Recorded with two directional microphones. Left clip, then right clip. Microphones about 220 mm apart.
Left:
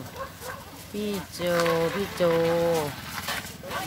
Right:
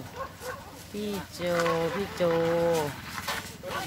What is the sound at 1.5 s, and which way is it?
Speech, 30° left (ahead or behind).